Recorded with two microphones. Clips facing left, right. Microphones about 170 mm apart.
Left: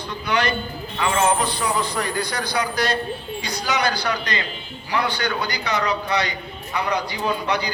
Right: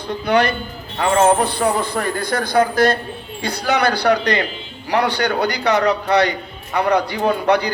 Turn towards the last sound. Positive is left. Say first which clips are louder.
# right 7 dB
turn(degrees=-60)  # may be behind; listen again after turning